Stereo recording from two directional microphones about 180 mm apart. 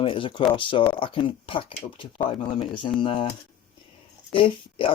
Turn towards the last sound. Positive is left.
turn(degrees=30)  # may be behind; listen again after turning